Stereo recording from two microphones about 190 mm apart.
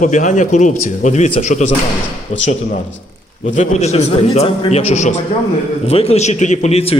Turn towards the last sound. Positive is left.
turn(degrees=30)  # may be behind; listen again after turning